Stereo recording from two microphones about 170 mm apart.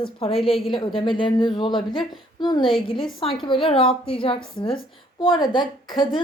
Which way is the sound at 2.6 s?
Centre (ahead or behind).